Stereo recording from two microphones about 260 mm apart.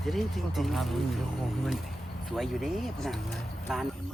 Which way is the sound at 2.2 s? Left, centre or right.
Centre.